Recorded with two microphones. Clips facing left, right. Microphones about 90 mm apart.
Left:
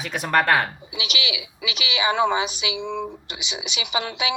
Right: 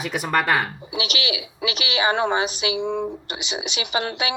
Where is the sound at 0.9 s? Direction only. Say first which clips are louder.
Right 3 dB; 40° right (ahead or behind).